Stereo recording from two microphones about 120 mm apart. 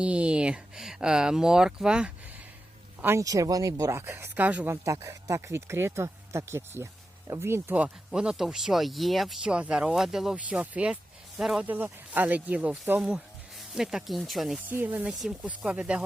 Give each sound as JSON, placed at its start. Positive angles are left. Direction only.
{"t": 0.0, "sound": "speech", "side_deg": -10}
{"t": 3.0, "sound": "speech", "side_deg": -20}
{"t": 4.7, "sound": "speech", "side_deg": -25}
{"t": 11.7, "sound": "speech", "side_deg": -15}
{"t": 14.7, "sound": "speech", "side_deg": -15}